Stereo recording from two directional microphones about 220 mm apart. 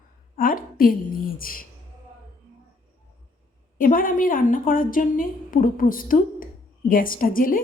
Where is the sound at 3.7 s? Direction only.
40° left (ahead or behind).